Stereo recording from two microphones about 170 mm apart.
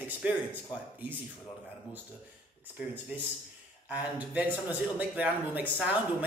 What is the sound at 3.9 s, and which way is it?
Speech, 10° right (ahead or behind).